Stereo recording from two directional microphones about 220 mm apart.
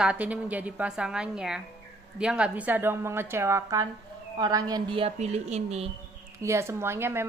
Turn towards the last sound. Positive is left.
turn(degrees=-10)  # may be behind; listen again after turning